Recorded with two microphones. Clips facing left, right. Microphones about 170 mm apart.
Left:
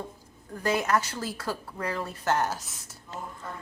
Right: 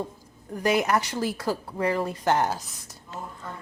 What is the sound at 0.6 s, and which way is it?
A woman's voice, 20° right (ahead or behind).